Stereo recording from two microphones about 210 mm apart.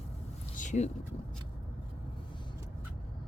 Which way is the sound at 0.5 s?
35° left (ahead or behind).